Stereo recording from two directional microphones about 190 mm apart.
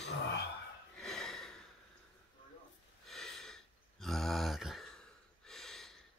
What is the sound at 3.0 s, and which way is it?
Gasp, centre (ahead or behind).